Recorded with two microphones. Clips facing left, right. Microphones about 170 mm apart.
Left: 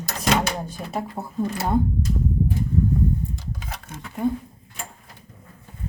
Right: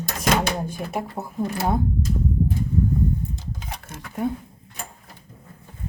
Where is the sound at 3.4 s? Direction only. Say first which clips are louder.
Even; 20° right (ahead or behind).